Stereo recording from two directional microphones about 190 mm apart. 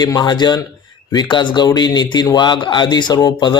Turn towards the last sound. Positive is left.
turn(degrees=20)  # may be behind; listen again after turning